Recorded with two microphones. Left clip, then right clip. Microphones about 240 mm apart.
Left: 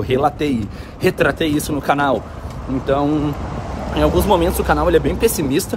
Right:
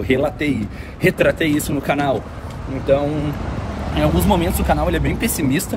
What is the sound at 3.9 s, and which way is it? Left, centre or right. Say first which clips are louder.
Speech: left 3 dB; centre.